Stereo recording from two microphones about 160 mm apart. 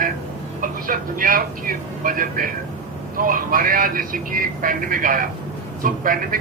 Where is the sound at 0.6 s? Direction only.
60° right (ahead or behind).